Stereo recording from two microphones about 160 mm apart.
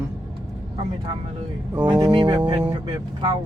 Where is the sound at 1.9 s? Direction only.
25° right (ahead or behind).